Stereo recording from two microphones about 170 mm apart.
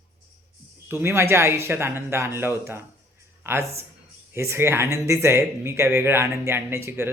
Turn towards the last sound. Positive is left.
turn(degrees=-15)  # may be behind; listen again after turning